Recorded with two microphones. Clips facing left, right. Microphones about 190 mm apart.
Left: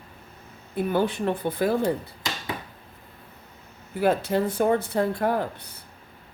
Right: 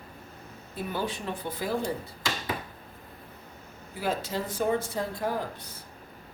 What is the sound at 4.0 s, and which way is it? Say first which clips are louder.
Speech: left 8 dB; 60° left (ahead or behind).